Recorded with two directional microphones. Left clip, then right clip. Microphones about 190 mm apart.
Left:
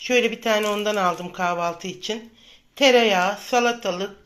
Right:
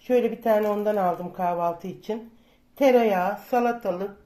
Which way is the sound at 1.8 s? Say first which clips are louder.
Left 3 dB; 5° right (ahead or behind).